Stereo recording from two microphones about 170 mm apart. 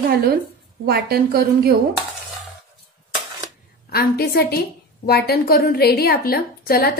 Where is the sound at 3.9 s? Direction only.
65° left (ahead or behind).